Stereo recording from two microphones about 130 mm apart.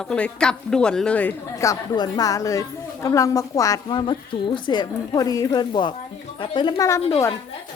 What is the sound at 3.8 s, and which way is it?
A woman's voice, 35° left (ahead or behind).